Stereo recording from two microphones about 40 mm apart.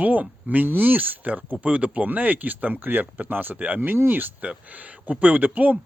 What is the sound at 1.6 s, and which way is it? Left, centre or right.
Speech, right.